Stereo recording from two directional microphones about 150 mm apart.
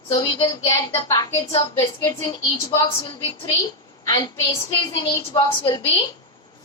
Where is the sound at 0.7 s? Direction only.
25° left (ahead or behind).